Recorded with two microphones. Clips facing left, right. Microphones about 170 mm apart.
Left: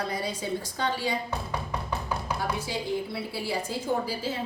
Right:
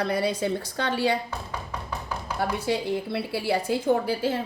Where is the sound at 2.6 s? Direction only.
65° right (ahead or behind).